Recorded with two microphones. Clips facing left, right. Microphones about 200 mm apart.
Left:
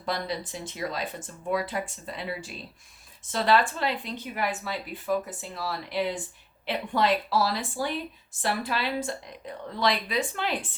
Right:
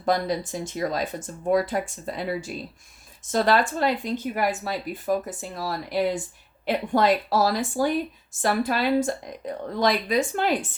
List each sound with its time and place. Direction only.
0.0 s speech: 45° right (ahead or behind)